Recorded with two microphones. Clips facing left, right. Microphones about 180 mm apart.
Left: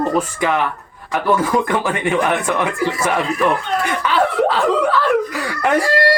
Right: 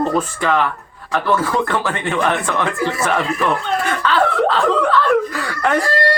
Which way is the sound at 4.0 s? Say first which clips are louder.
Even; 10° left (ahead or behind).